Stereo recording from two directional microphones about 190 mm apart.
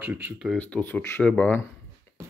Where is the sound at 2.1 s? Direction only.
15° left (ahead or behind).